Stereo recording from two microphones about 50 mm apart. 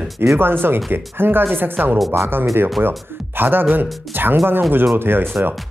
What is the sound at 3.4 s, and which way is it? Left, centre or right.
Speech, right.